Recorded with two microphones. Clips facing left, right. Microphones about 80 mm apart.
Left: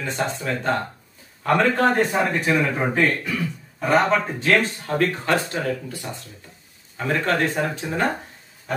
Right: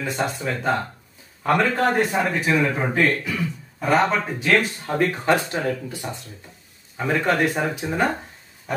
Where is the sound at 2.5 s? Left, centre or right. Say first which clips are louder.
Even; centre.